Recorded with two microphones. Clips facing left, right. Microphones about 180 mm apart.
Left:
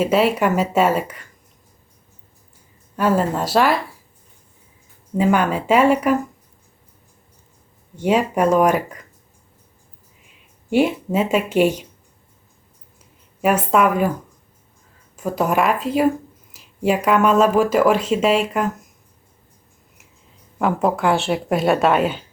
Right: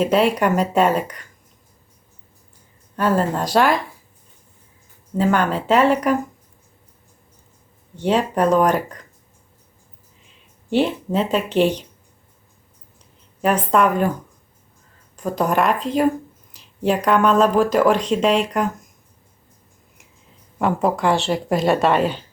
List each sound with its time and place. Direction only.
0.0 s speech: 5° left (ahead or behind)
2.9 s speech: 5° left (ahead or behind)
5.1 s speech: 10° left (ahead or behind)
7.9 s speech: 10° left (ahead or behind)
10.7 s speech: 10° left (ahead or behind)
13.4 s speech: 5° left (ahead or behind)
15.1 s speech: 5° left (ahead or behind)
20.6 s speech: centre (ahead or behind)